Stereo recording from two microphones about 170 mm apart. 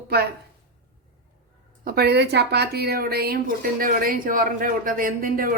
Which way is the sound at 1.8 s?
70° right (ahead or behind).